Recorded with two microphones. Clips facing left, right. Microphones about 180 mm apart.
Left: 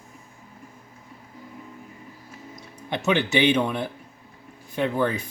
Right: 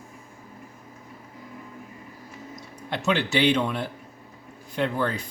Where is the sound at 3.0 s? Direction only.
20° left (ahead or behind).